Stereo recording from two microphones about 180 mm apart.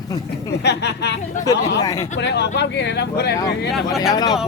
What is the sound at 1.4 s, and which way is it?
Speech, 20° left (ahead or behind).